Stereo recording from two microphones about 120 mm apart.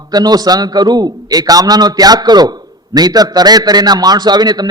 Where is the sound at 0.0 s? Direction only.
35° right (ahead or behind).